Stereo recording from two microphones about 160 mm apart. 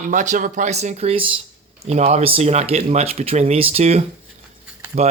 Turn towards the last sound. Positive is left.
turn(degrees=-40)  # may be behind; listen again after turning